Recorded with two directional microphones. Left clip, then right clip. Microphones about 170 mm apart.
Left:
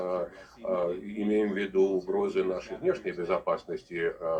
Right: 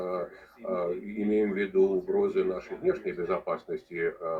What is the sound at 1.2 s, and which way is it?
Speech, 10° right (ahead or behind).